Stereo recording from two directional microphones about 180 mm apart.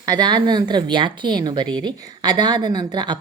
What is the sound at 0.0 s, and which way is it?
Speech, 25° right (ahead or behind).